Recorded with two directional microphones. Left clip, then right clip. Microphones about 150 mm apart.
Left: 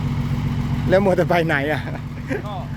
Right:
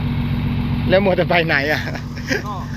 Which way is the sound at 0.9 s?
40° left (ahead or behind).